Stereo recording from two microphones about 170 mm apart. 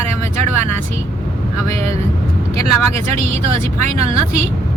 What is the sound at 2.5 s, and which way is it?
Speech, 35° right (ahead or behind).